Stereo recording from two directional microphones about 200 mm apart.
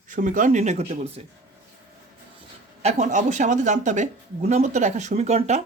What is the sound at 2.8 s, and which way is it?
Speech, 35° right (ahead or behind).